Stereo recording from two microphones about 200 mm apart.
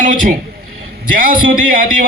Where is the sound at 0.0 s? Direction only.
40° right (ahead or behind).